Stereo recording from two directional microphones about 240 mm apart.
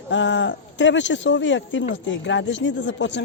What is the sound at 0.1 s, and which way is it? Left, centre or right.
Speech, left.